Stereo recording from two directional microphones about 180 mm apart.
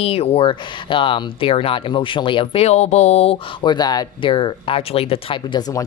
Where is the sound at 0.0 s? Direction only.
35° left (ahead or behind).